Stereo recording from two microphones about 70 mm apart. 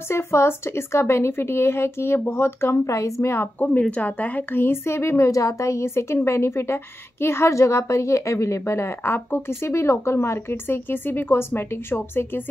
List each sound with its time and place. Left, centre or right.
0.1 s a woman's voice: left
3.5 s a woman's voice: left